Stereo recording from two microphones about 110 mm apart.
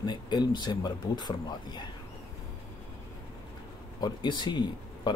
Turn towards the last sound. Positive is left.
turn(degrees=40)  # may be behind; listen again after turning